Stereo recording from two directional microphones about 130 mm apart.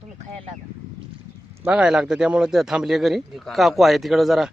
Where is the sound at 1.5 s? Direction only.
10° right (ahead or behind).